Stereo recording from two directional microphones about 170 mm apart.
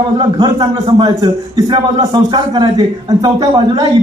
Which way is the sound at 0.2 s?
25° right (ahead or behind).